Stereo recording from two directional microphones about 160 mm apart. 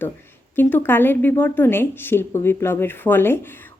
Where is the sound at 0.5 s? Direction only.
10° left (ahead or behind).